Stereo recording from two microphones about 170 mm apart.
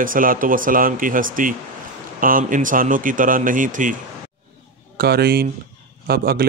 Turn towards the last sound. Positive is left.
turn(degrees=-60)  # may be behind; listen again after turning